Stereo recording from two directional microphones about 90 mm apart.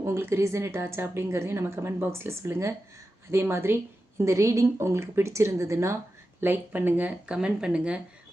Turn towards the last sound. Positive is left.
turn(degrees=-10)  # may be behind; listen again after turning